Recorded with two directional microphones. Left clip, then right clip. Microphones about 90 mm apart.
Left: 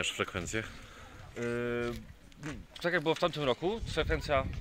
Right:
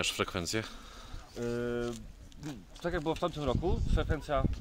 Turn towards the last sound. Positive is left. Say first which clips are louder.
# left 3 dB
turn(degrees=30)  # may be behind; listen again after turning